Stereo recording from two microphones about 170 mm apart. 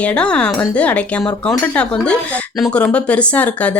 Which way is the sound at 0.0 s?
5° left (ahead or behind).